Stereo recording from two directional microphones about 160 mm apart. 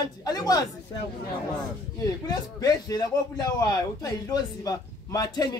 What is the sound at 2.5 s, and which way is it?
A man's voice, 25° left (ahead or behind).